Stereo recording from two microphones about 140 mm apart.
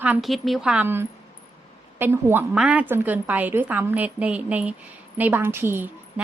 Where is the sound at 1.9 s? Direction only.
15° right (ahead or behind).